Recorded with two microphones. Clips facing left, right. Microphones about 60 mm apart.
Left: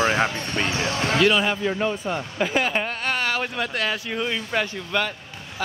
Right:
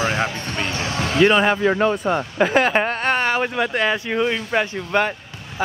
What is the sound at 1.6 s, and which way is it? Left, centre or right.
Speech, right.